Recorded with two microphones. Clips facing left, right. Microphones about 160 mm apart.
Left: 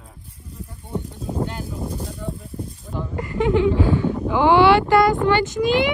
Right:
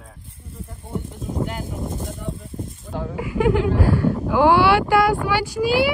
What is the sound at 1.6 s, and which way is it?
Speech, 20° right (ahead or behind).